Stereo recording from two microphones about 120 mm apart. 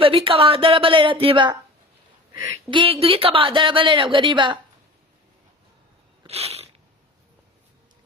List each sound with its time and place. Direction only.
0.0 s speech: 50° right (ahead or behind)
2.3 s speech: 25° right (ahead or behind)
2.6 s speech: 45° right (ahead or behind)
6.2 s a sound: 60° right (ahead or behind)